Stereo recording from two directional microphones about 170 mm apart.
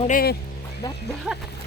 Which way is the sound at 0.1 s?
60° left (ahead or behind).